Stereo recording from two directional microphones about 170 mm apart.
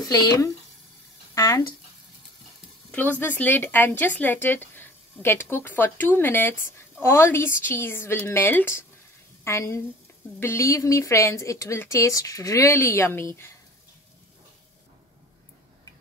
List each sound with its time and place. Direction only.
0.0 s speech: 20° left (ahead or behind)
2.9 s a woman's voice: 10° left (ahead or behind)